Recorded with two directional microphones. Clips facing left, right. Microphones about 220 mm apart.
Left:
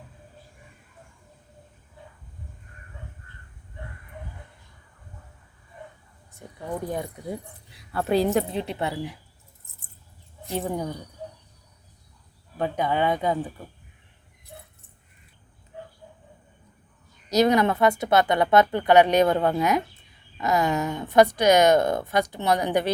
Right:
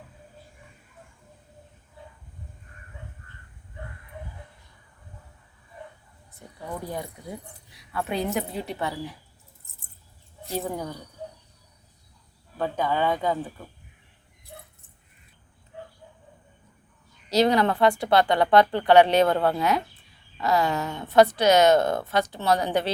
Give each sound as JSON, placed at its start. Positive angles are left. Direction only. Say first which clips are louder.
{"t": 6.7, "sound": "a woman's voice", "louder": "left 4 dB", "side_deg": 20}
{"t": 7.9, "sound": "a woman's voice", "louder": "left 6 dB", "side_deg": 35}
{"t": 10.5, "sound": "a woman's voice", "louder": "left 2 dB", "side_deg": 20}
{"t": 12.5, "sound": "a woman's voice", "louder": "left 1 dB", "side_deg": 15}
{"t": 17.2, "sound": "a woman's voice", "louder": "left 1 dB", "side_deg": 20}